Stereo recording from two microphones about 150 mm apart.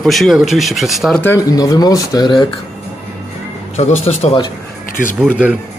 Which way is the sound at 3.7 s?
45° left (ahead or behind).